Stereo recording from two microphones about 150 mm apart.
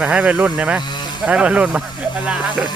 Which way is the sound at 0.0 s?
10° right (ahead or behind).